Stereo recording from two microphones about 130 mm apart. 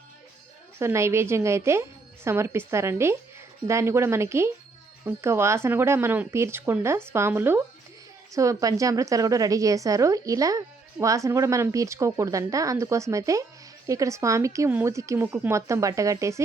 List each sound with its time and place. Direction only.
0.8 s speech: 20° right (ahead or behind)